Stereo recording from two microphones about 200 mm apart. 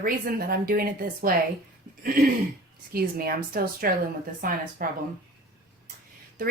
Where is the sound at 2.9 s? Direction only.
50° right (ahead or behind).